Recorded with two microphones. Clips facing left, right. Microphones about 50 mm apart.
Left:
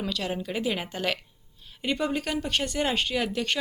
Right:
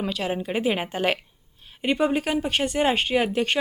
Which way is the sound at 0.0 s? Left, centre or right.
Right.